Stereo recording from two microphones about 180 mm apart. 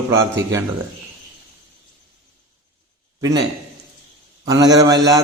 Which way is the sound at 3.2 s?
20° right (ahead or behind).